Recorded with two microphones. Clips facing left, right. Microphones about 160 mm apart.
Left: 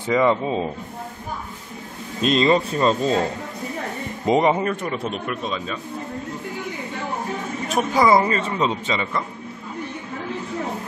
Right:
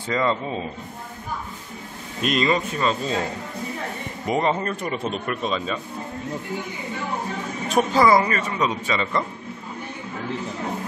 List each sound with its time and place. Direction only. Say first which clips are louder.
0.1 s speech: left 5 dB; 15° left (ahead or behind)
2.2 s speech: left 4 dB; 30° left (ahead or behind)
4.3 s speech: left 4 dB; 15° left (ahead or behind)
4.6 s speech: left 2 dB; centre (ahead or behind)
7.9 s speech: left 2 dB; 20° left (ahead or behind)